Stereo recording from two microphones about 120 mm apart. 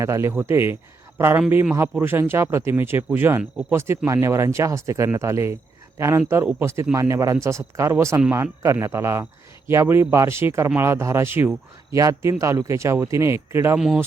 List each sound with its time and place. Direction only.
0.0 s speech: 25° right (ahead or behind)
13.7 s speech: 5° right (ahead or behind)